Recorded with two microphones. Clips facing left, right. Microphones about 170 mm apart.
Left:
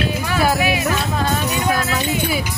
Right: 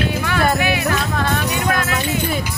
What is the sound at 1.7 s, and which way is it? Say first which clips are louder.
Speech: left 1 dB; 5° left (ahead or behind).